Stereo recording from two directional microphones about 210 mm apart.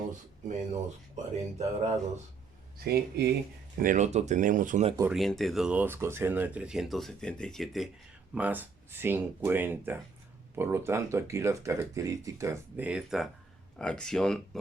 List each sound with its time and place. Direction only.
0.4 s speech: 35° right (ahead or behind)
2.7 s speech: 50° right (ahead or behind)
3.8 s speech: 35° right (ahead or behind)
5.1 s speech: centre (ahead or behind)